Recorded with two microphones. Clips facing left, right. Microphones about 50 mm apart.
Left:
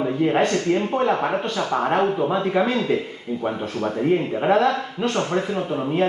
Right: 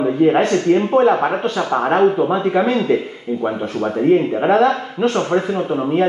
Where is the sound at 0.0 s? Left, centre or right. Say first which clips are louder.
Right 6 dB; centre.